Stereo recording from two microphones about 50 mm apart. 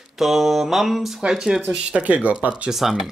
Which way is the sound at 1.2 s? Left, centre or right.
Centre.